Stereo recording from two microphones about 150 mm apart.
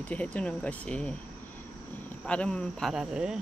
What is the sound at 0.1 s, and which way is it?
Speech, 10° left (ahead or behind).